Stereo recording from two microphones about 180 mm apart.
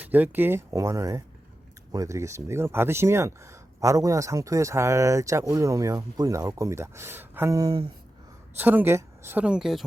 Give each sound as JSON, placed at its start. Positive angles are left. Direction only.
{"t": 0.0, "sound": "speech", "side_deg": -10}
{"t": 8.5, "sound": "speech", "side_deg": -10}